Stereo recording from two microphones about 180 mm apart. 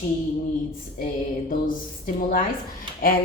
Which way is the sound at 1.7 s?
50° left (ahead or behind).